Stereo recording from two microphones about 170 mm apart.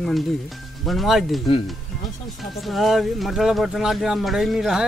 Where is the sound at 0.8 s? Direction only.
Centre (ahead or behind).